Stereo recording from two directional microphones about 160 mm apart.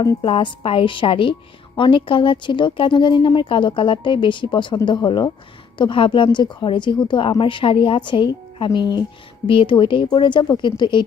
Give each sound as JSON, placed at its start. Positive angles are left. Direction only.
{"t": 0.2, "sound": "a woman's voice", "side_deg": 35}